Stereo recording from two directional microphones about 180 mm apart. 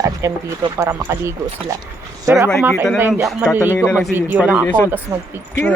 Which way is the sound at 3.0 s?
10° right (ahead or behind).